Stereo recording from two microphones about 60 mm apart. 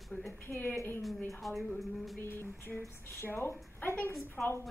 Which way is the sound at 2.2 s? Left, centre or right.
Left.